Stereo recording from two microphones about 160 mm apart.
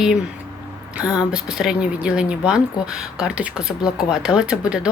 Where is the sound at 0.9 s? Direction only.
5° right (ahead or behind).